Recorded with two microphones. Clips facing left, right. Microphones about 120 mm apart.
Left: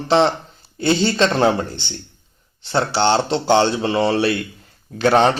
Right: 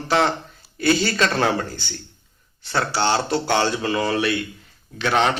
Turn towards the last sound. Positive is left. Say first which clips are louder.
# left 5 dB
turn(degrees=35)  # may be behind; listen again after turning